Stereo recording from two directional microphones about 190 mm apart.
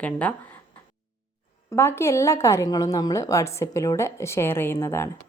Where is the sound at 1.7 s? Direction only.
10° left (ahead or behind).